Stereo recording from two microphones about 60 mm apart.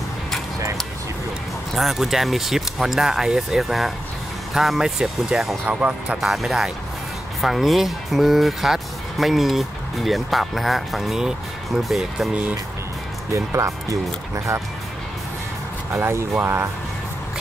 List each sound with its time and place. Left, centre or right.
1.7 s speech: centre
5.7 s speech: right
6.2 s speech: centre
13.3 s speech: right
16.0 s speech: right